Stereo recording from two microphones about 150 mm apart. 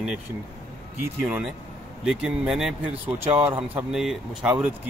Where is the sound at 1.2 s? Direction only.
10° right (ahead or behind).